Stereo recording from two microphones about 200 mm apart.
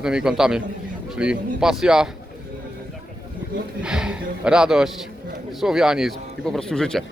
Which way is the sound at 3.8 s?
5° right (ahead or behind).